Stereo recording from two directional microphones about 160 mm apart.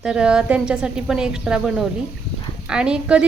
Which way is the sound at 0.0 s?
5° right (ahead or behind).